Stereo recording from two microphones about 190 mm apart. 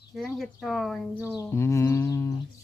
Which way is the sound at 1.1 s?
10° right (ahead or behind).